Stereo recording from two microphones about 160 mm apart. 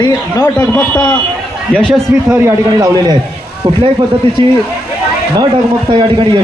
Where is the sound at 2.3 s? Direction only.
20° right (ahead or behind).